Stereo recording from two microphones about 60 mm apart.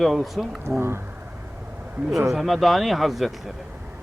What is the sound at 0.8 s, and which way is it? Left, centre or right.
Speech, right.